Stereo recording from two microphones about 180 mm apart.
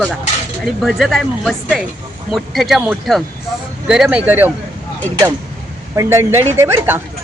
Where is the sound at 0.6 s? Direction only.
Centre (ahead or behind).